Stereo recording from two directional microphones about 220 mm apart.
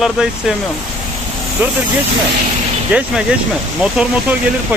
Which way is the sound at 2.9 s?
5° right (ahead or behind).